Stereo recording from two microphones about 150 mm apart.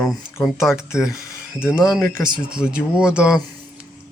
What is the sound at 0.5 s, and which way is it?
Speech, 5° right (ahead or behind).